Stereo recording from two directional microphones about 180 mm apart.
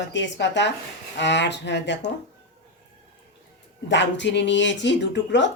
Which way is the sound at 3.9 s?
80° left.